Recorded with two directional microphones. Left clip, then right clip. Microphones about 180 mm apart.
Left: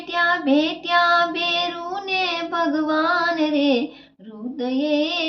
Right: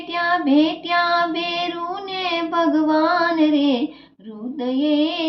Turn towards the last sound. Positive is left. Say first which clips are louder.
# right 1 dB
turn(degrees=10)  # may be behind; listen again after turning